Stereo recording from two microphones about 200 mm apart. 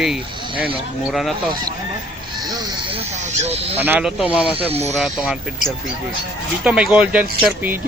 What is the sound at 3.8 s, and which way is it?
Speech, 10° right (ahead or behind).